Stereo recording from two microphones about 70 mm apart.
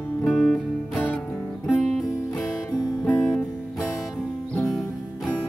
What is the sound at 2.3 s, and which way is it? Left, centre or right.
Music, centre.